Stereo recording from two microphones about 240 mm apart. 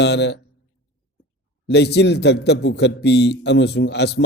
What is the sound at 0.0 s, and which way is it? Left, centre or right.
Speech, left.